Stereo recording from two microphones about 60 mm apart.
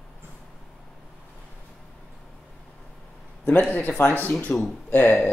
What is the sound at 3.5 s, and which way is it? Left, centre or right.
Speech, left.